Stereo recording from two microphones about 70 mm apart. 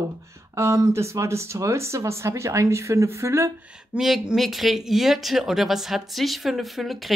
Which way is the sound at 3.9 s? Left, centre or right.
Centre.